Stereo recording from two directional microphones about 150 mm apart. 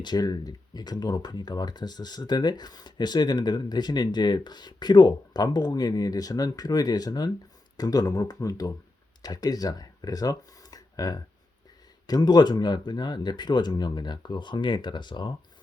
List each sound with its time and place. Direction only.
0.0 s speech: 25° left (ahead or behind)